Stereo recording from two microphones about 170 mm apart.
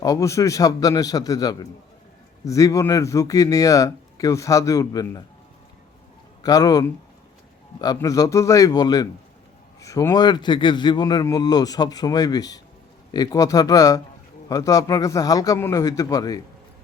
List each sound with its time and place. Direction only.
0.0 s a man's voice: 20° left (ahead or behind)
6.4 s a man's voice: 20° left (ahead or behind)
7.9 s a man's voice: 20° left (ahead or behind)